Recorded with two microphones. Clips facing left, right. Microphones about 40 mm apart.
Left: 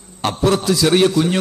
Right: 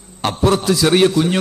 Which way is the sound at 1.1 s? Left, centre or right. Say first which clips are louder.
Even; centre.